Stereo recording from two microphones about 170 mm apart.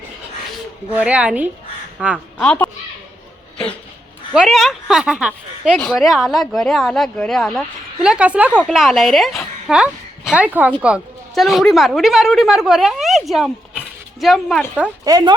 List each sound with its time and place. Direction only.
0.9 s a woman's voice: 5° right (ahead or behind)
2.1 s a woman's voice: 5° left (ahead or behind)
4.4 s speech: centre (ahead or behind)
5.7 s a woman's voice: 5° left (ahead or behind)
15.0 s speech: 25° right (ahead or behind)